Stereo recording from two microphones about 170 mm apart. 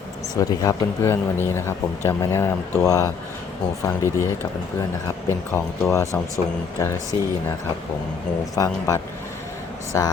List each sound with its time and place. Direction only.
0.3 s speech: 20° left (ahead or behind)
5.5 s speech: 15° left (ahead or behind)
8.5 s speech: 20° left (ahead or behind)